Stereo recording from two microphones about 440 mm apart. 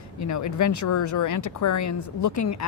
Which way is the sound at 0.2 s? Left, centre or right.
Left.